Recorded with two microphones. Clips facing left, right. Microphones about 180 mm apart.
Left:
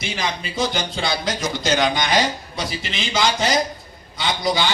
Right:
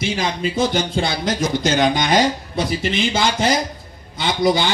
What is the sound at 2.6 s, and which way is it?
Speech, 55° right (ahead or behind).